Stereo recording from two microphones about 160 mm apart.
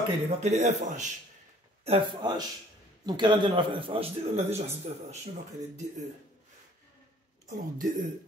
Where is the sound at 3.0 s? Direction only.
25° right (ahead or behind).